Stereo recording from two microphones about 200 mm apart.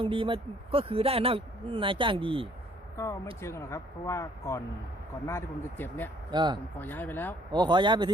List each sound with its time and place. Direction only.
0.0 s speech: 25° right (ahead or behind)
3.0 s speech: 15° left (ahead or behind)
6.3 s speech: 20° right (ahead or behind)
6.7 s speech: 10° left (ahead or behind)
7.5 s speech: 20° right (ahead or behind)